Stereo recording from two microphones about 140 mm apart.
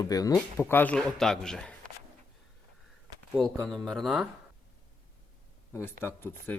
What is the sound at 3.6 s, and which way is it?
Speech, 5° left (ahead or behind).